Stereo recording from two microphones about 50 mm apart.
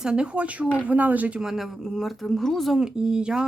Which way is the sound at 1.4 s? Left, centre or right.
Centre.